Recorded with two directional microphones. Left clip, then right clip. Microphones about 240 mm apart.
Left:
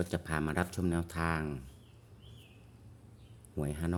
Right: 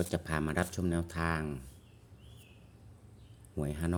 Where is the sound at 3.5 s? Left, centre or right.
Centre.